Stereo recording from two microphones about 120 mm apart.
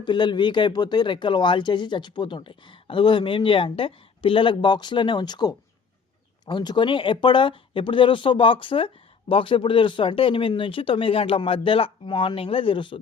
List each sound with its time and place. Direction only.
0.0 s speech: 40° left (ahead or behind)